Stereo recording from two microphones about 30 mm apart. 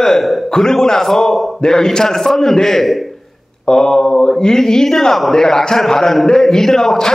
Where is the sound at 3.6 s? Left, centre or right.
Centre.